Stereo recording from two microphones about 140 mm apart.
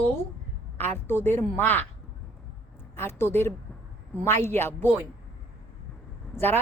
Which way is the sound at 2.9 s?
15° left (ahead or behind).